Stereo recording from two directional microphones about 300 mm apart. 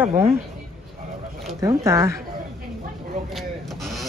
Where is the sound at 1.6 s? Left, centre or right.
Centre.